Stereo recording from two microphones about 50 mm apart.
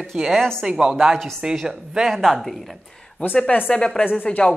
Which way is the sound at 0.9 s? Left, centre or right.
Centre.